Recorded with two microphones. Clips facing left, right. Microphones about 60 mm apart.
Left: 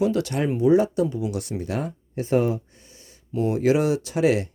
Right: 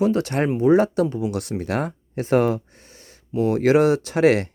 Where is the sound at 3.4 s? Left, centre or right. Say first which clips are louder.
Right 4 dB; right.